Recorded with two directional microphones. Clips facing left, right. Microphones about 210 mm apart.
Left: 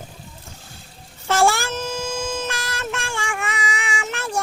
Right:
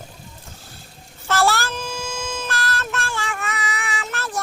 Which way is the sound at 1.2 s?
15° left (ahead or behind).